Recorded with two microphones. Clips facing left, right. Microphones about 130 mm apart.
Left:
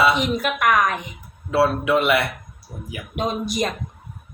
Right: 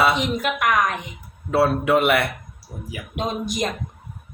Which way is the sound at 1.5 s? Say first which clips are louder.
Even; 50° right (ahead or behind).